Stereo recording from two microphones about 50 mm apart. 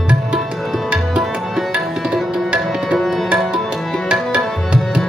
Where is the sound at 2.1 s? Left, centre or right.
Centre.